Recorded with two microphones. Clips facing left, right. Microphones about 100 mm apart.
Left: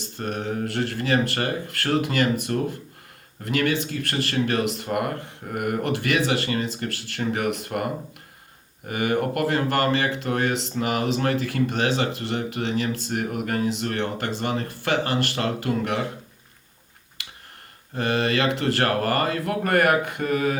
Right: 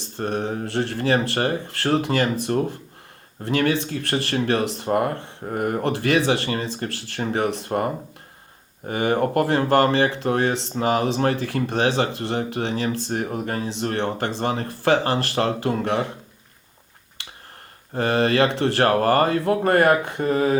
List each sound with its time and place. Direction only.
0.0 s speech: 30° right (ahead or behind)
8.9 s speech: 30° right (ahead or behind)
17.9 s speech: 35° right (ahead or behind)